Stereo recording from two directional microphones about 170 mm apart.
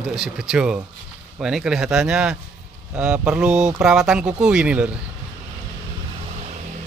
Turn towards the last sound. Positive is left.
turn(degrees=-5)  # may be behind; listen again after turning